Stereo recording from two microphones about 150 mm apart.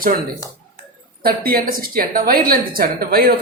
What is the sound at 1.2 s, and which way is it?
A woman's voice, 80° right.